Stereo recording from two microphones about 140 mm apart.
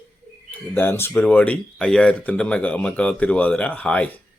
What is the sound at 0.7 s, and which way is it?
Speech, 15° left (ahead or behind).